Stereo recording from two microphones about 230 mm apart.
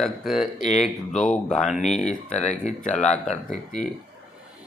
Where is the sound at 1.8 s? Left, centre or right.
Left.